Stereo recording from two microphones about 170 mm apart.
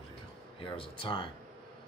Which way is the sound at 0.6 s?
30° left (ahead or behind).